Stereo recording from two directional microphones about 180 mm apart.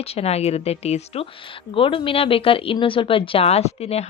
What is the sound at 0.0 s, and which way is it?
Speech, 35° left (ahead or behind).